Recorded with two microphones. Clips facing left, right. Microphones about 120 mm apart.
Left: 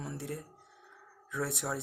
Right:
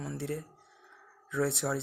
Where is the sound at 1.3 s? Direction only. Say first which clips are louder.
Right 5 dB; 10° left (ahead or behind).